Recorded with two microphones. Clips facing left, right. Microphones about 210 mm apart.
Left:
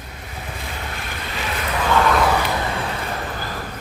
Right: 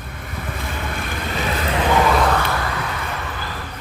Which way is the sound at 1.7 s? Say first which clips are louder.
Right 1 dB; 20° right (ahead or behind).